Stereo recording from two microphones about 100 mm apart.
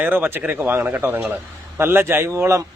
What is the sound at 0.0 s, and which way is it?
A man's voice, 20° right (ahead or behind).